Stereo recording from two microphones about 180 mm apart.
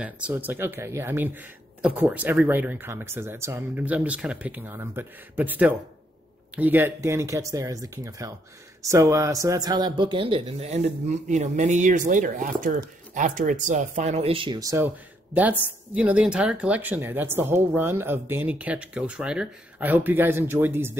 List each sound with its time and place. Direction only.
0.0 s speech: 10° right (ahead or behind)